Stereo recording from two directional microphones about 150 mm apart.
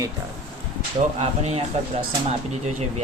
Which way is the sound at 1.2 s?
45° right (ahead or behind).